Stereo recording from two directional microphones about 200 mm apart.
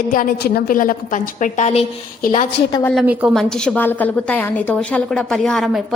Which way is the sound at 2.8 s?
Centre (ahead or behind).